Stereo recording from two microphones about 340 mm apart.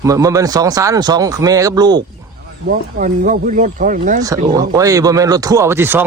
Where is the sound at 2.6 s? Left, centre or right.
Right.